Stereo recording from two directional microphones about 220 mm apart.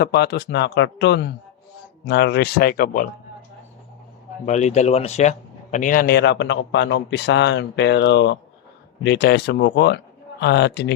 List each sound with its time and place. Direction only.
0.0 s a man's voice: 50° left (ahead or behind)
4.4 s a man's voice: 30° left (ahead or behind); by 10.9 s 50° left (ahead or behind)